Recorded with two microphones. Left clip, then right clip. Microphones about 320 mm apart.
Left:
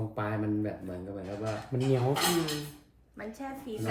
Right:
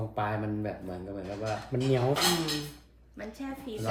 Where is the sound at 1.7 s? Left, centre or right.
Right.